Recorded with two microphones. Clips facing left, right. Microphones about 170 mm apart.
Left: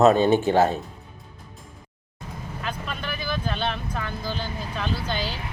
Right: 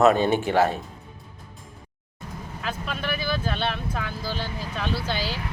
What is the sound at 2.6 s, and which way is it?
Vehicle, 5° right (ahead or behind).